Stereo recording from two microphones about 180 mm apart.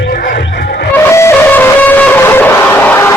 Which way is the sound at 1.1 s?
15° left (ahead or behind).